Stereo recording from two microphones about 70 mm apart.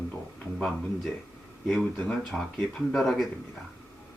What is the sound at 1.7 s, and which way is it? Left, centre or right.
Speech, centre.